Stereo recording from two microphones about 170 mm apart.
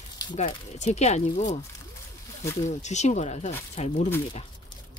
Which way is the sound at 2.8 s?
45° left (ahead or behind).